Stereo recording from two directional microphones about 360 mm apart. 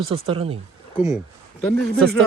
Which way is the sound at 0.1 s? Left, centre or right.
Centre.